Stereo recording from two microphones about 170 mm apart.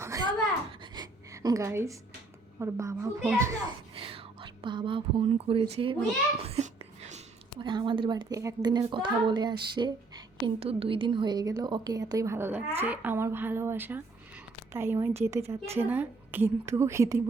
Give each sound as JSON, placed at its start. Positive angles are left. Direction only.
{"t": 0.9, "sound": "a sound", "side_deg": -20}
{"t": 2.6, "sound": "a woman's voice", "side_deg": -15}
{"t": 3.9, "sound": "whispering", "side_deg": -30}
{"t": 5.7, "sound": "a child's voice", "side_deg": -30}
{"t": 6.4, "sound": "whispering", "side_deg": -40}
{"t": 7.6, "sound": "a woman's voice", "side_deg": -25}